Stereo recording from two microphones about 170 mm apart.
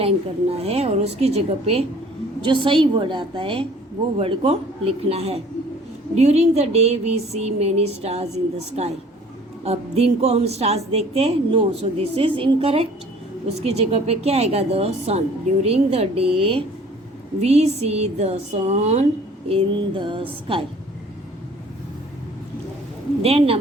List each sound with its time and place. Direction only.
0.5 s a woman's voice: 35° right (ahead or behind)
23.2 s a woman's voice: 35° right (ahead or behind)